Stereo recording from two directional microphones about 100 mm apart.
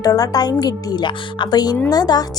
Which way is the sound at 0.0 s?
40° left (ahead or behind).